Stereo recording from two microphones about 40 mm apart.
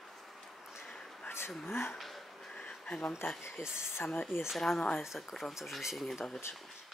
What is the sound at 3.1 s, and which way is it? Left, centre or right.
Speech, left.